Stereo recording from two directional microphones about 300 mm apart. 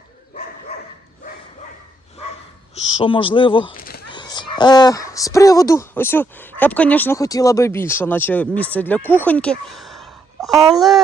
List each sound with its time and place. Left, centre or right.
3.0 s speech: centre
3.8 s a sound: left
4.1 s speech: centre
9.0 s speech: centre
9.2 s a sound: centre
10.7 s speech: centre